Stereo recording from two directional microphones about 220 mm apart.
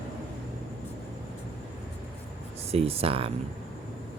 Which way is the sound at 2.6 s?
25° right (ahead or behind).